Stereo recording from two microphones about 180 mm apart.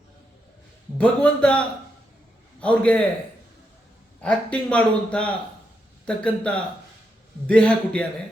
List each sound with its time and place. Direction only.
0.9 s a man's voice: 5° left (ahead or behind)
4.2 s a man's voice: 5° left (ahead or behind)